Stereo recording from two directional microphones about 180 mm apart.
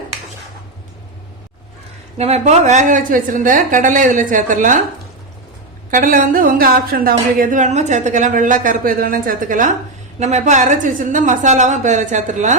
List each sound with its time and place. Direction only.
2.1 s a woman's voice: 35° right (ahead or behind)
5.9 s a woman's voice: 50° right (ahead or behind)